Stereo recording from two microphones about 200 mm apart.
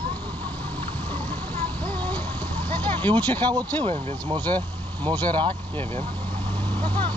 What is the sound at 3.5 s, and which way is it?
Speech, 20° right (ahead or behind).